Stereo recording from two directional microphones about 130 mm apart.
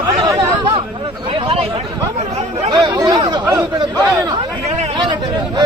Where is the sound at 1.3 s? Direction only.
45° right (ahead or behind).